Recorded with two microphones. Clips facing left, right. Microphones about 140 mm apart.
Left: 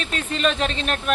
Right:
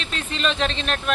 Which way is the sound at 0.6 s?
5° left (ahead or behind).